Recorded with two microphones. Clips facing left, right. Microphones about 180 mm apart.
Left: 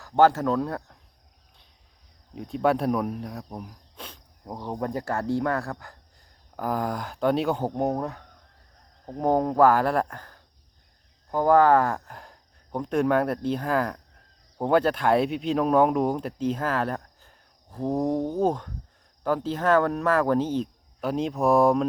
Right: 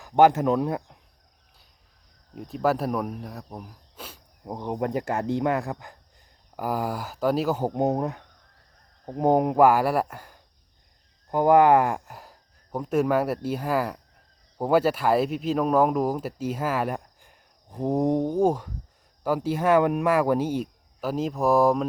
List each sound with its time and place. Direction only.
0.0 s speech: 15° right (ahead or behind)
2.3 s speech: centre (ahead or behind)
4.5 s speech: 20° right (ahead or behind)
7.7 s speech: 20° right (ahead or behind); by 21.8 s centre (ahead or behind)